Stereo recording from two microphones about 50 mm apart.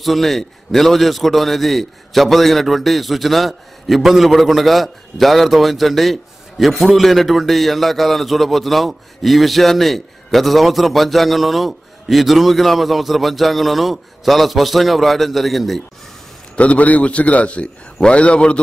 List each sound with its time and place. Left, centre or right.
0.0 s a man's voice: centre
16.5 s a man's voice: left